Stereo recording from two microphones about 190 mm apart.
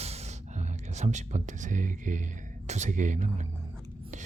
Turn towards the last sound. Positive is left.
turn(degrees=-40)  # may be behind; listen again after turning